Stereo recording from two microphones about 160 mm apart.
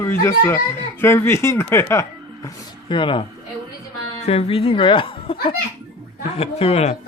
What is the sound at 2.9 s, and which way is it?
Speech, 30° left (ahead or behind).